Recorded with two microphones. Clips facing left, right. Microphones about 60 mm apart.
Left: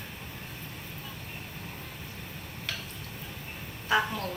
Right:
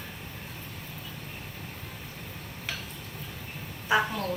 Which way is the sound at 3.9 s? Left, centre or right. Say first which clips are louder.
Right 1 dB; centre.